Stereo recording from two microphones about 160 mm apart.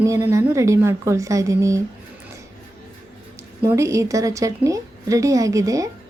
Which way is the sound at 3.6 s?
20° right (ahead or behind).